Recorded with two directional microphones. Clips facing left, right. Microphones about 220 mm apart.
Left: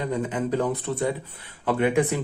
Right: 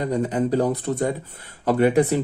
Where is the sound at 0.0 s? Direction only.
40° right (ahead or behind).